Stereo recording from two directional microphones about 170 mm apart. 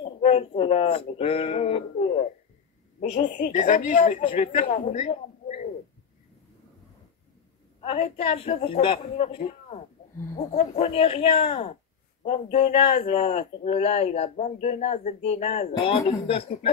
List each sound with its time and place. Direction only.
0.0 s a man's voice: 35° left (ahead or behind)
7.8 s speech: 35° left (ahead or behind)
15.8 s speech: 30° left (ahead or behind)